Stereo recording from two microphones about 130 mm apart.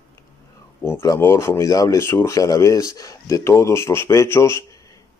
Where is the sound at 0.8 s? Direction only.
20° left (ahead or behind).